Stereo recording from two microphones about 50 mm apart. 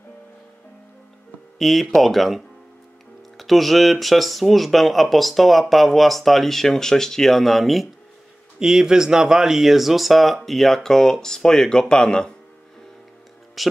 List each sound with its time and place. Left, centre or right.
1.6 s speech: centre
8.5 s speech: centre
13.6 s speech: centre